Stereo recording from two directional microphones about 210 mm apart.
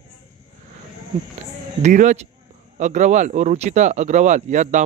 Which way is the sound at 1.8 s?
35° right (ahead or behind).